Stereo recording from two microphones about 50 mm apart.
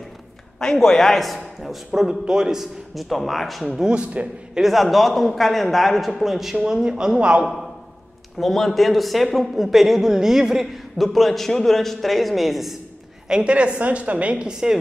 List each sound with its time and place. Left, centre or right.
0.6 s a man's voice: centre
2.0 s a man's voice: centre
3.6 s speech: centre
3.9 s a woman's voice: right
4.6 s a man's voice: centre; by 7.4 s right
7.4 s a man's voice: centre
13.3 s a woman's voice: right